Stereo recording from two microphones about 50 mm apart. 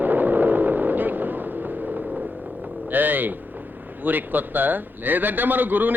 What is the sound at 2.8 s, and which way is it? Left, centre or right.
Vehicle, right.